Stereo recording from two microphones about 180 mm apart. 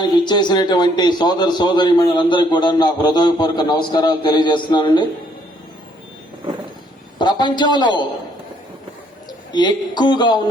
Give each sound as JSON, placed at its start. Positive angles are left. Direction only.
{"t": 0.0, "sound": "a man's voice", "side_deg": 25}
{"t": 7.2, "sound": "a man's voice", "side_deg": 25}
{"t": 9.5, "sound": "a man's voice", "side_deg": 25}